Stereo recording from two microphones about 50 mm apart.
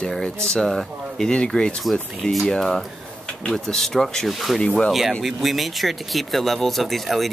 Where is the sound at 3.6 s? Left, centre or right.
Centre.